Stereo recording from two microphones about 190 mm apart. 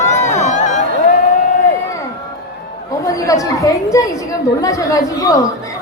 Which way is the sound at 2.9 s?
15° left (ahead or behind).